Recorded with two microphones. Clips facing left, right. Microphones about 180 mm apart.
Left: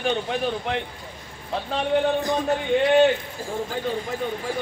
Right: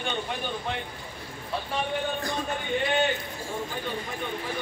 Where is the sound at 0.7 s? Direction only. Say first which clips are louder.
Left 6 dB; 90° left.